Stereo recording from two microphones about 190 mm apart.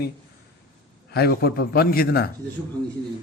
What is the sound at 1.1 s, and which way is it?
A man's voice, 55° left (ahead or behind).